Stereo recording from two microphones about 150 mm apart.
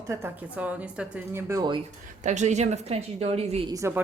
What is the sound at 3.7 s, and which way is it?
Speech, 20° right (ahead or behind).